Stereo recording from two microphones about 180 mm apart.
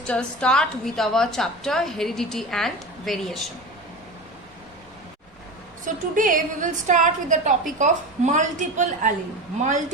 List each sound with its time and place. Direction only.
0.0 s a woman's voice: 5° left (ahead or behind)
5.8 s a woman's voice: 45° right (ahead or behind)